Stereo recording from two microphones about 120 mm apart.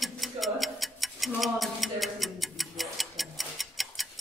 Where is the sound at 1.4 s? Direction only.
Centre (ahead or behind).